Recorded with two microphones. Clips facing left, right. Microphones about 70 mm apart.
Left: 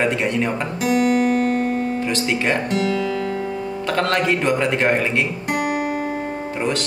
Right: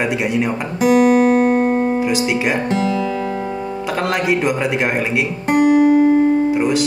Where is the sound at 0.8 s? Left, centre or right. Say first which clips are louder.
Right 6 dB; centre.